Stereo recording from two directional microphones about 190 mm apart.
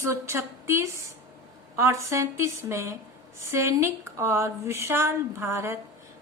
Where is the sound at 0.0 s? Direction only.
15° right (ahead or behind).